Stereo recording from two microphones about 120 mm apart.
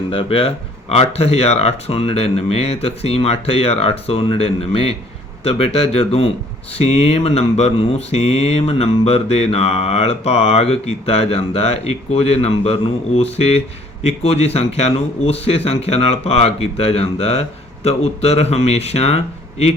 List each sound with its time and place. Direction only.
0.1 s mantra: 50° left (ahead or behind)